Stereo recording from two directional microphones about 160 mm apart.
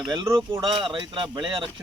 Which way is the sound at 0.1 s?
25° right (ahead or behind).